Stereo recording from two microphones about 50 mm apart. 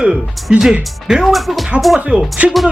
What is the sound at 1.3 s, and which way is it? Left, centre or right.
Speech, centre.